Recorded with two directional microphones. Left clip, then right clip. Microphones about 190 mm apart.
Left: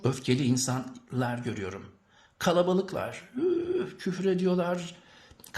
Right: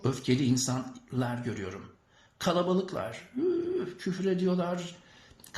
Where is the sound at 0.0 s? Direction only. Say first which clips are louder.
Left 1 dB; 30° left (ahead or behind).